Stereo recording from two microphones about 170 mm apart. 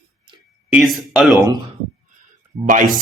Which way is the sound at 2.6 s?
50° right (ahead or behind).